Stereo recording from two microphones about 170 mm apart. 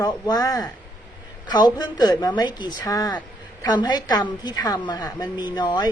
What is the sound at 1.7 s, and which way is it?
Speech, 25° left (ahead or behind).